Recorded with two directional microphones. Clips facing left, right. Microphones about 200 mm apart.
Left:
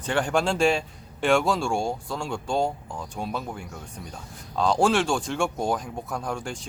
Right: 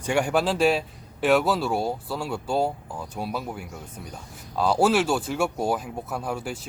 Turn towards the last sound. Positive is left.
turn(degrees=-5)  # may be behind; listen again after turning